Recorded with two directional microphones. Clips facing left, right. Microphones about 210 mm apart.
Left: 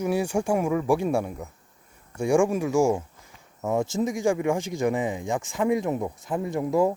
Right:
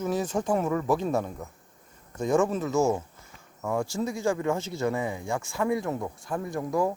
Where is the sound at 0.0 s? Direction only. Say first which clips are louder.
Left 3 dB; 10° left (ahead or behind).